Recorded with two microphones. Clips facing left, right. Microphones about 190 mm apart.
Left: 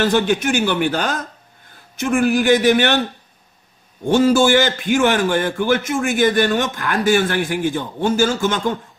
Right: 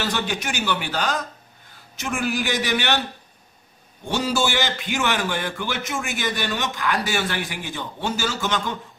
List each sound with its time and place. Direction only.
0.0 s a man's voice: 50° left (ahead or behind)
4.1 s a man's voice: 50° left (ahead or behind)